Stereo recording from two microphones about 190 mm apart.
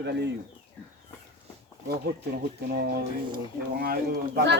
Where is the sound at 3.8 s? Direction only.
55° right (ahead or behind).